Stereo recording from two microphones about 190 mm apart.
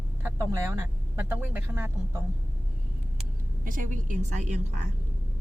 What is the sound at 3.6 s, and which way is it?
Speech, 45° right (ahead or behind).